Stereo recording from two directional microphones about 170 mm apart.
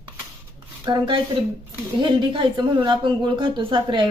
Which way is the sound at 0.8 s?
25° right (ahead or behind).